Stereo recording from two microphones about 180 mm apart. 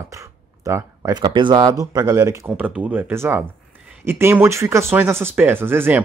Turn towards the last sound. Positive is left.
turn(degrees=-10)  # may be behind; listen again after turning